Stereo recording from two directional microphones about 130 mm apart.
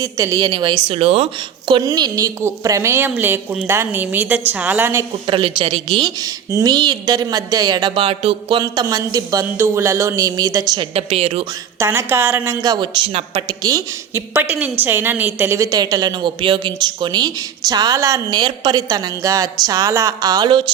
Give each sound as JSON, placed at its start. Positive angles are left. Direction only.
{"t": 0.0, "sound": "a woman's voice", "side_deg": -25}
{"t": 0.9, "sound": "a woman's voice", "side_deg": -50}
{"t": 1.6, "sound": "a woman's voice", "side_deg": -35}
{"t": 5.2, "sound": "speech", "side_deg": -40}
{"t": 8.6, "sound": "a woman's voice", "side_deg": -30}
{"t": 10.9, "sound": "a woman's voice", "side_deg": -50}
{"t": 11.8, "sound": "a woman's voice", "side_deg": -20}
{"t": 12.6, "sound": "a woman's voice", "side_deg": -35}
{"t": 14.1, "sound": "a woman's voice", "side_deg": -15}